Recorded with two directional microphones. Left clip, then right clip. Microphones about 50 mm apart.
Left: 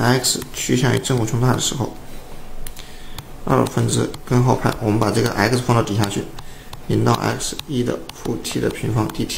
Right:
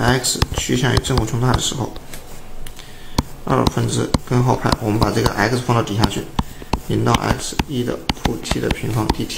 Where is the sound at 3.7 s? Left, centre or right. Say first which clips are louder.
Right 1 dB; left.